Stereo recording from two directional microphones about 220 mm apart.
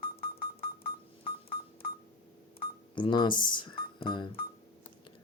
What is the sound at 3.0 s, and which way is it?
Speech, 20° left (ahead or behind).